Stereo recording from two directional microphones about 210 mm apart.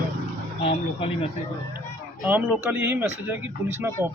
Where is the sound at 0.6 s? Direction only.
25° left (ahead or behind).